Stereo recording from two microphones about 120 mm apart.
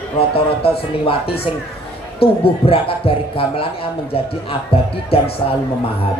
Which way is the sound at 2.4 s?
50° left (ahead or behind).